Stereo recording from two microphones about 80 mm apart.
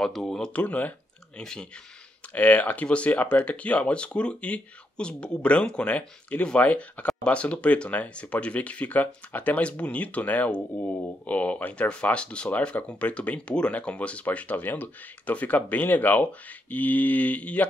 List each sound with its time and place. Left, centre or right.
0.0 s speech: centre
1.4 s speech: centre
2.3 s speech: centre